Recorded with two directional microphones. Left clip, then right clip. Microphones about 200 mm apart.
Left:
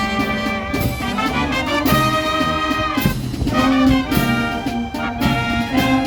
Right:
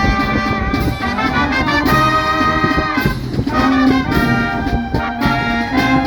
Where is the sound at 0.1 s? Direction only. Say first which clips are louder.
Right 4 dB; 50° left (ahead or behind).